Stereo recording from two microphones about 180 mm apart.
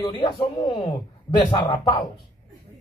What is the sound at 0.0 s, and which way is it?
Speech, 20° left (ahead or behind).